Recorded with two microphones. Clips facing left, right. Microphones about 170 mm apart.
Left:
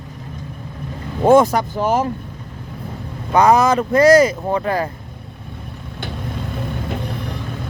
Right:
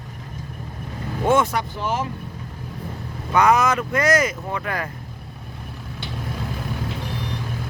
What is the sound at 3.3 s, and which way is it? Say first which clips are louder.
Speech: left 4 dB; 35° left (ahead or behind).